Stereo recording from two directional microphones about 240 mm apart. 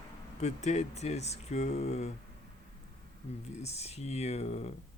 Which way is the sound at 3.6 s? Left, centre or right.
Left.